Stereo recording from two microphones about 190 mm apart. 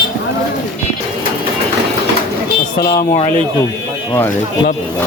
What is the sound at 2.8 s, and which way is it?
Speech, 15° left (ahead or behind).